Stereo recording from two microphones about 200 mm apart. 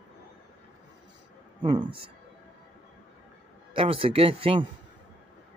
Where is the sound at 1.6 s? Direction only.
20° right (ahead or behind).